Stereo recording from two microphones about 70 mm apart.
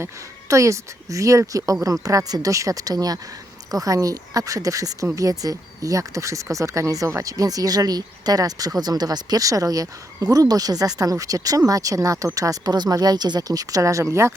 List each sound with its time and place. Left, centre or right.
0.0 s speech: right